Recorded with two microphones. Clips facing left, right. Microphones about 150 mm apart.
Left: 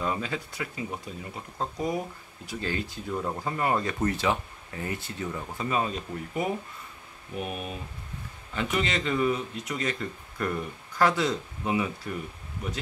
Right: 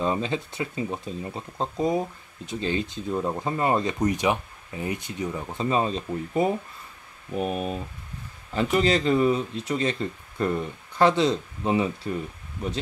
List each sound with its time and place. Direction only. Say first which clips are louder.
0.0 s speech: right 5 dB; 25° right (ahead or behind)